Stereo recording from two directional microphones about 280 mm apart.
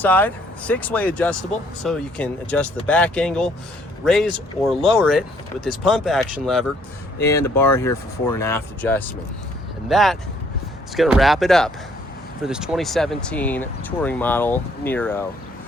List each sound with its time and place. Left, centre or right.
0.0 s speech: centre